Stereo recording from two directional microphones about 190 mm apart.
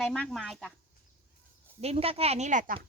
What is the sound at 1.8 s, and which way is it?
Speech, 30° right (ahead or behind).